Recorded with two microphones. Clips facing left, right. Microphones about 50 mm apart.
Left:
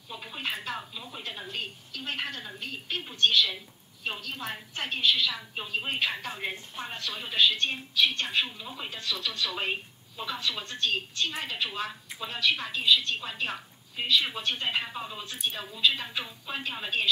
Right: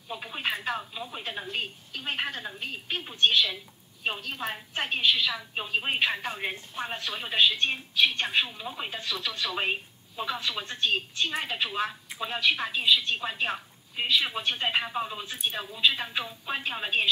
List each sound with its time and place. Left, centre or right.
0.1 s a woman's voice: centre